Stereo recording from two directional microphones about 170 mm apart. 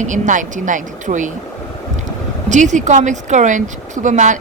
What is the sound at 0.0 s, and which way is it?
Speech, 50° right (ahead or behind).